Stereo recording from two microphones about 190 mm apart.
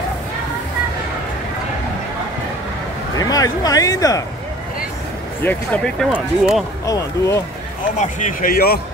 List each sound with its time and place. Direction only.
3.2 s speech: 20° left (ahead or behind)
5.4 s speech: 10° left (ahead or behind)
6.9 s speech: 15° left (ahead or behind)
8.0 s speech: 45° left (ahead or behind)